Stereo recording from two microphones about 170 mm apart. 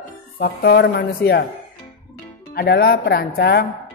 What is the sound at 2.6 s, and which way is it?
Speech, 65° left (ahead or behind).